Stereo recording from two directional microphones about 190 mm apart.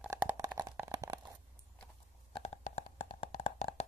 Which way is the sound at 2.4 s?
30° left (ahead or behind).